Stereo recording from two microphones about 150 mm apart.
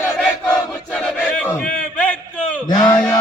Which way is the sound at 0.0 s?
15° left (ahead or behind).